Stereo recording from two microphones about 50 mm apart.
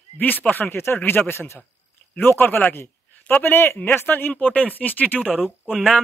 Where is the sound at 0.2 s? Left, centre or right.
Left.